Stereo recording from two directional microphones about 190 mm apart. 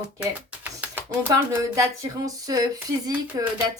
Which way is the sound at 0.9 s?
15° right (ahead or behind).